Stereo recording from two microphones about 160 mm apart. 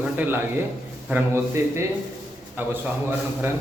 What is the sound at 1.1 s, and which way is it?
A man's voice, 15° right (ahead or behind).